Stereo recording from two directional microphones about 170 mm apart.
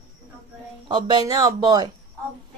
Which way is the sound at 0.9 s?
25° right (ahead or behind).